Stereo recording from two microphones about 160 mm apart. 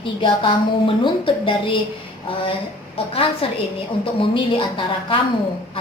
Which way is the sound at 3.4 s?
35° left (ahead or behind).